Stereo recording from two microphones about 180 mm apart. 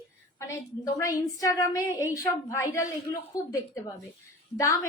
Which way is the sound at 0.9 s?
20° left (ahead or behind).